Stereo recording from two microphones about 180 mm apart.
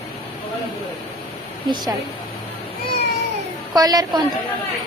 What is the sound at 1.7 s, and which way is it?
Speech, 20° right (ahead or behind).